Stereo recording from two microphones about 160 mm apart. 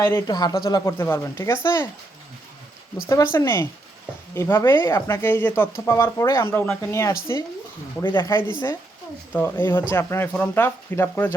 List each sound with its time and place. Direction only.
0.0 s speech: 20° left (ahead or behind)
0.9 s speech: 15° left (ahead or behind)
3.3 s speech: 15° left (ahead or behind)
9.3 s speech: 15° left (ahead or behind)